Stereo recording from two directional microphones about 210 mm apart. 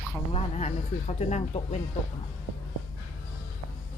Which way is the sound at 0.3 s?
30° left (ahead or behind).